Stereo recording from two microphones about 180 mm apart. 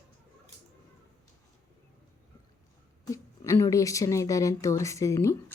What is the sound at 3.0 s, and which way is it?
Speech, 15° left (ahead or behind).